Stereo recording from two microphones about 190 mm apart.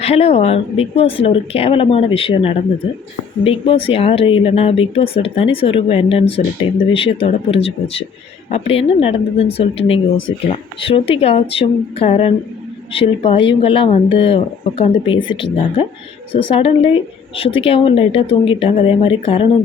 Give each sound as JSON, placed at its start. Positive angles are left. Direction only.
{"t": 0.0, "sound": "speech", "side_deg": 30}